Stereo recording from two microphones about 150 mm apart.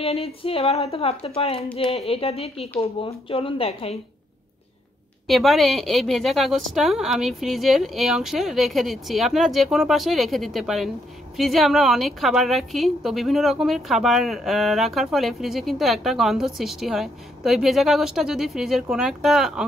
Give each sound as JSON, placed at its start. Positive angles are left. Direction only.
{"t": 0.0, "sound": "speech", "side_deg": 40}
{"t": 5.2, "sound": "a woman's voice", "side_deg": 0}